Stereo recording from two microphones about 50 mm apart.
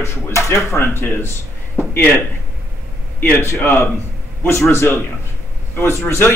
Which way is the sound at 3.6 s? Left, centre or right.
Left.